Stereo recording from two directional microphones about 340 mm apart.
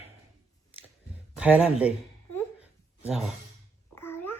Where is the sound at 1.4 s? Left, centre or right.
Centre.